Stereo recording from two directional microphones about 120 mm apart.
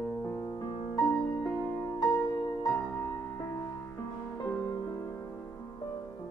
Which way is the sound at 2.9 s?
15° left (ahead or behind).